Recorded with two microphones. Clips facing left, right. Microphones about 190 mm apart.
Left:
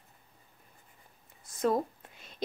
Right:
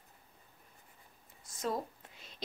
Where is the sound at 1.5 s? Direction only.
55° left (ahead or behind).